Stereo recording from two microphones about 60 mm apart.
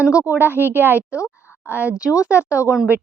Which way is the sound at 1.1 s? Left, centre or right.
Left.